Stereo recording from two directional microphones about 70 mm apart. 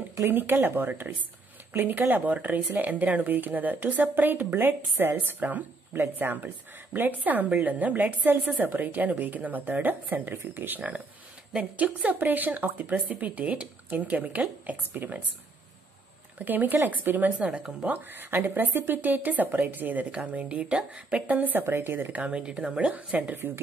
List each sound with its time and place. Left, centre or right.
0.3 s a woman's voice: right
16.3 s a woman's voice: right